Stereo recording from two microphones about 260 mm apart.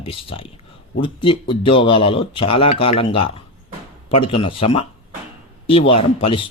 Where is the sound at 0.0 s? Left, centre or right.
Left.